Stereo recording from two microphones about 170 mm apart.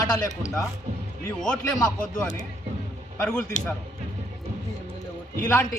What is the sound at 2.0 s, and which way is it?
A man's voice, 5° left (ahead or behind).